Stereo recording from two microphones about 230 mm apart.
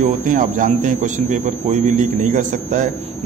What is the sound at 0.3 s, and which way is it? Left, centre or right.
A man's voice, right.